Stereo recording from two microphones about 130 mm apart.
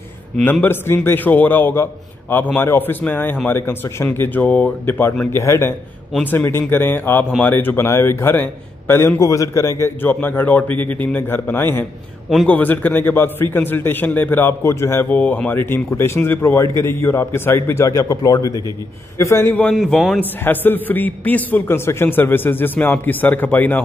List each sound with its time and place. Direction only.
0.4 s a man's voice: 15° left (ahead or behind)
19.7 s a man's voice: centre (ahead or behind)
20.4 s a man's voice: 15° left (ahead or behind)